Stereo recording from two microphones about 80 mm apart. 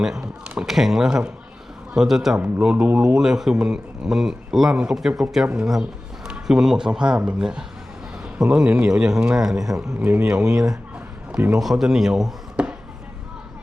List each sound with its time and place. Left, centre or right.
0.0 s speech: centre
2.6 s a man's voice: centre
10.4 s speech: right
11.3 s a man's voice: centre
11.6 s speech: centre